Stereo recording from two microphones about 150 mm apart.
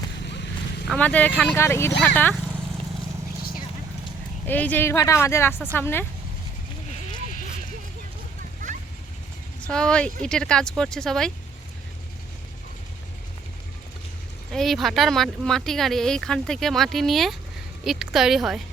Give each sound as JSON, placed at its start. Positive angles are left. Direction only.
{"t": 0.9, "sound": "a woman's voice", "side_deg": 10}
{"t": 4.4, "sound": "a woman's voice", "side_deg": 10}
{"t": 9.6, "sound": "a woman's voice", "side_deg": 5}
{"t": 14.5, "sound": "speech", "side_deg": 0}